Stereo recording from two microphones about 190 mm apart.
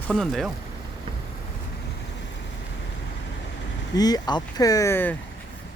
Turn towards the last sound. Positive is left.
turn(degrees=15)  # may be behind; listen again after turning